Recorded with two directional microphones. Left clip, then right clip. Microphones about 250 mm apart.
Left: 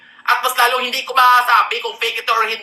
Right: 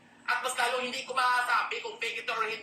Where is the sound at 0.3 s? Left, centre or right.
Left.